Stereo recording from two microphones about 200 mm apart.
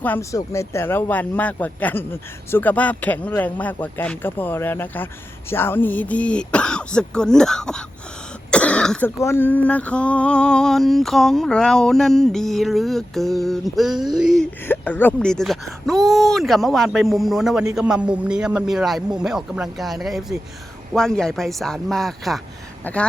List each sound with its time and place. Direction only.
0.0 s speech: 10° left (ahead or behind)